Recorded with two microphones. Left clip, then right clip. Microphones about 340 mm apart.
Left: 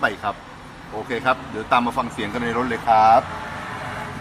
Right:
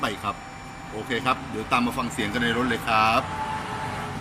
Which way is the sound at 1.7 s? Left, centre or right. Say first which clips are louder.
Left 5 dB; left.